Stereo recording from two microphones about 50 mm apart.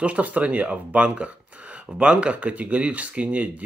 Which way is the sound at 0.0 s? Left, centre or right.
Right.